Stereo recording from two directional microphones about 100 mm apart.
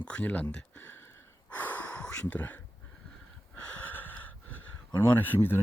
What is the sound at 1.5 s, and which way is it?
Gasp, 15° left (ahead or behind).